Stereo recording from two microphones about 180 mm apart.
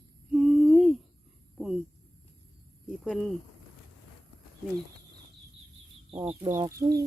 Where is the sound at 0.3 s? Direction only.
5° right (ahead or behind).